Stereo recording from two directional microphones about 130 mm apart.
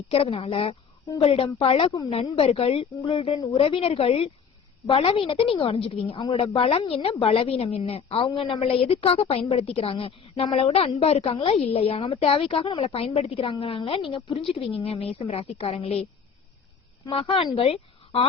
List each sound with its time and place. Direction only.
0.1 s a woman's voice: 45° left (ahead or behind)
17.1 s a woman's voice: 40° left (ahead or behind)